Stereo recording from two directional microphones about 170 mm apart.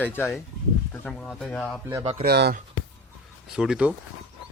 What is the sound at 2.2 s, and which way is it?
Speech, 70° right (ahead or behind).